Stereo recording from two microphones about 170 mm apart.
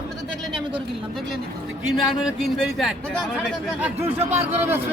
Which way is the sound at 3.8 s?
10° right (ahead or behind).